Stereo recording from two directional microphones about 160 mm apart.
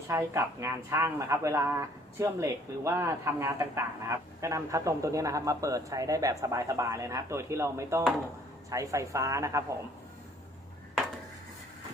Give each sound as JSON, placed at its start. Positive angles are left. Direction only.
{"t": 0.1, "sound": "speech", "side_deg": -20}